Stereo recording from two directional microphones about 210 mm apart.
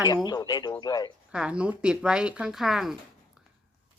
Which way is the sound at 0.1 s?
20° left (ahead or behind).